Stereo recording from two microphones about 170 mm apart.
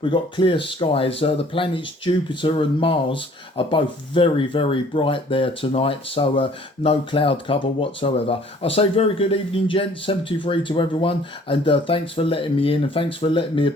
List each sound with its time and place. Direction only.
0.0 s speech: 30° left (ahead or behind)